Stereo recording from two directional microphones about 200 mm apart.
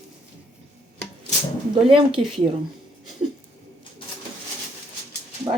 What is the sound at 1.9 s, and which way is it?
Speech, 25° right (ahead or behind).